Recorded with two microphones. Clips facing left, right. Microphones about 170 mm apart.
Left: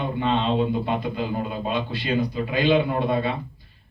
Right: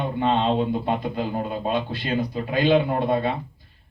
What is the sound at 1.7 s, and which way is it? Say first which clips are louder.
Speech: even; 50° right (ahead or behind).